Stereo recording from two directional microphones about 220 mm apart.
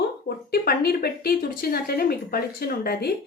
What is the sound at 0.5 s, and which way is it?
Speech, 45° left (ahead or behind).